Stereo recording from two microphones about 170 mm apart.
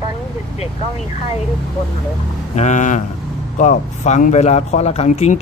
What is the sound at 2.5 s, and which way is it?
Speech, 45° left (ahead or behind).